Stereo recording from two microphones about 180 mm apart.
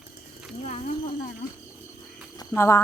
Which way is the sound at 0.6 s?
40° left (ahead or behind).